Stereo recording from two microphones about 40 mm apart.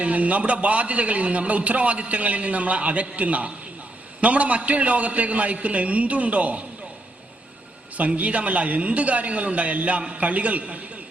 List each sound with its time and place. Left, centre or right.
0.0 s a man's voice: right
7.9 s a man's voice: right